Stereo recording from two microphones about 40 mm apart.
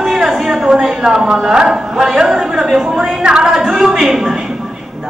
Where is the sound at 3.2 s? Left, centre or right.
Right.